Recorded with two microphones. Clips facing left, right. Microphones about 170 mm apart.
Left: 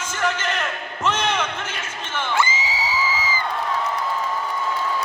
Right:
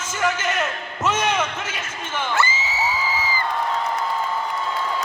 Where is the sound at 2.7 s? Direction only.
90° left.